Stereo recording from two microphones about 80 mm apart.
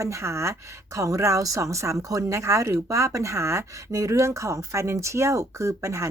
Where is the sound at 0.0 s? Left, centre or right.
Right.